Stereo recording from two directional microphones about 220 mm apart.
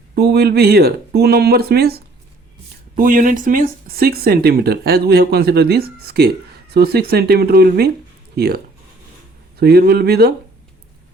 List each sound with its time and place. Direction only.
0.2 s speech: 45° right (ahead or behind)